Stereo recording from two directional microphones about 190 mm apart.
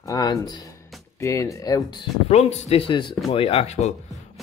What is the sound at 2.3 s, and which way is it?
Speech, 35° left (ahead or behind).